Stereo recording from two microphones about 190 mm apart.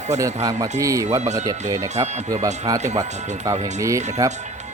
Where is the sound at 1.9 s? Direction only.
35° right (ahead or behind).